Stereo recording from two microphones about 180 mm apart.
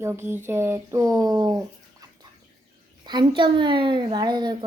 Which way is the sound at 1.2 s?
20° right (ahead or behind).